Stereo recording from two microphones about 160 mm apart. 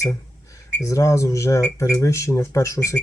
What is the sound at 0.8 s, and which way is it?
Speech, 20° left (ahead or behind).